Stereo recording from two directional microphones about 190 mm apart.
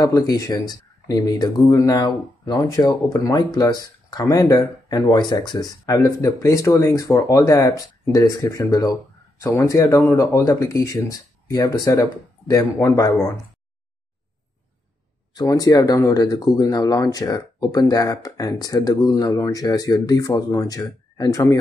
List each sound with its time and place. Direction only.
0.0 s speech: 20° left (ahead or behind)
15.3 s speech: 20° left (ahead or behind)